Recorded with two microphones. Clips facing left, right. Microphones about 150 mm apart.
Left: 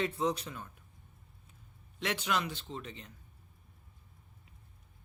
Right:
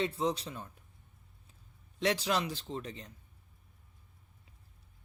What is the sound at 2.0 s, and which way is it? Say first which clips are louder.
Speech: right 3 dB; 35° right (ahead or behind).